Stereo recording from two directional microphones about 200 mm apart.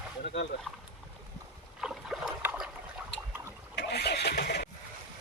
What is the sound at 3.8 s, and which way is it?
Vehicle, 55° left (ahead or behind).